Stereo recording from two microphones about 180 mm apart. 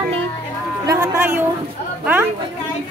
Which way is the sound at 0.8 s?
15° right (ahead or behind).